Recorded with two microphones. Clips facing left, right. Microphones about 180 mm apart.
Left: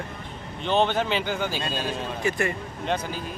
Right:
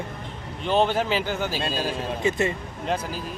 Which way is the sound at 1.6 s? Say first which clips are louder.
Right 2 dB; 35° right (ahead or behind).